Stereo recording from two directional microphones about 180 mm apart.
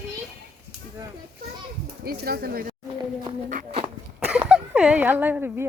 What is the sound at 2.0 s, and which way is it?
Speech, 60° right (ahead or behind).